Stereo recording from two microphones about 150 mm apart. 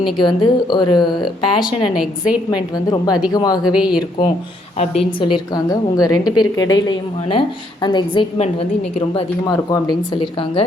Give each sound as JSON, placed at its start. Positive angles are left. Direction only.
{"t": 0.2, "sound": "speech", "side_deg": 30}
{"t": 2.0, "sound": "a woman's voice", "side_deg": -5}
{"t": 2.7, "sound": "a woman's voice", "side_deg": 25}
{"t": 3.7, "sound": "speech", "side_deg": -5}
{"t": 4.8, "sound": "speech", "side_deg": 35}
{"t": 6.0, "sound": "a woman's voice", "side_deg": 25}
{"t": 8.4, "sound": "a woman's voice", "side_deg": 45}
{"t": 9.5, "sound": "a woman's voice", "side_deg": 25}